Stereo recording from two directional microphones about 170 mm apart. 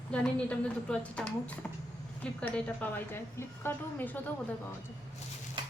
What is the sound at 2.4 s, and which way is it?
A woman's voice, 10° left (ahead or behind).